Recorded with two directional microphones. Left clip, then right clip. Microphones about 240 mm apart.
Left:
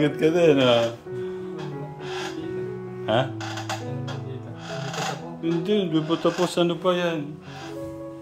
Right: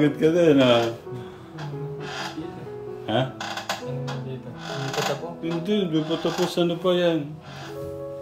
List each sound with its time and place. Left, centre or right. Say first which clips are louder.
0.0 s a man's voice: even; centre
3.1 s speech: left 2 dB; centre
5.4 s speech: left 4 dB; centre